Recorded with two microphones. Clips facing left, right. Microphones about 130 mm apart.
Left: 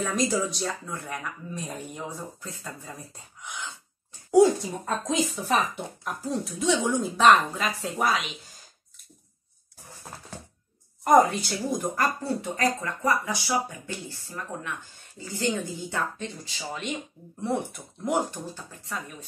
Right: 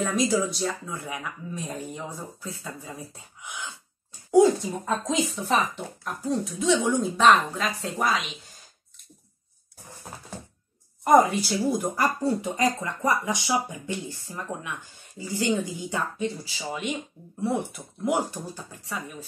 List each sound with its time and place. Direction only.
0.0 s speech: centre (ahead or behind)
11.1 s speech: centre (ahead or behind)